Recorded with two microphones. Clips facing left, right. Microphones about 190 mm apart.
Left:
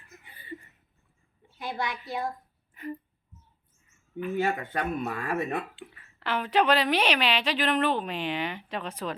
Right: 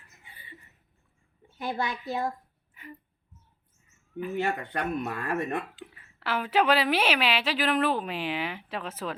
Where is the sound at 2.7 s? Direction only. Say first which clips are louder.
Left 10 dB; 40° left (ahead or behind).